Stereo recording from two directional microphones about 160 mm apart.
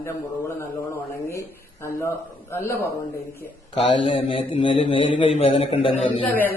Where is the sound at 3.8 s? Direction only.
35° left (ahead or behind).